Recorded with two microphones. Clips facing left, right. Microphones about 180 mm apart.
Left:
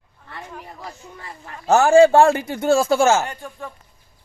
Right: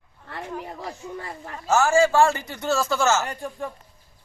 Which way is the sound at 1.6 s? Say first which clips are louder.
Left 7 dB; 60° left (ahead or behind).